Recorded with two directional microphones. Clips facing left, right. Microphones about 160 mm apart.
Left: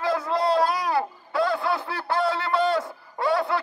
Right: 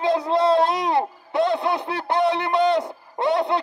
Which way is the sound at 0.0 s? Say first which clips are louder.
Right 4 dB; 20° right (ahead or behind).